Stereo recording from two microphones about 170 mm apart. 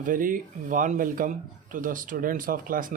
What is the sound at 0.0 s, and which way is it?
Speech, 50° right (ahead or behind).